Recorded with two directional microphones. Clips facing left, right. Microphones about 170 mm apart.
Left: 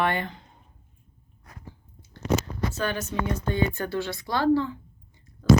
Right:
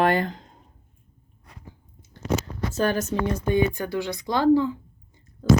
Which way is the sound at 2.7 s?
40° right (ahead or behind).